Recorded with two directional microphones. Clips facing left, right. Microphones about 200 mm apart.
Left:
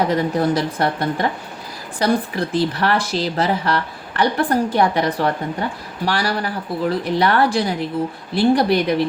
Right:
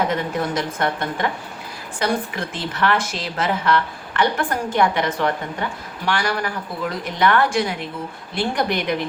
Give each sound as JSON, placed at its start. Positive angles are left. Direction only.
{"t": 0.1, "sound": "speech", "side_deg": 35}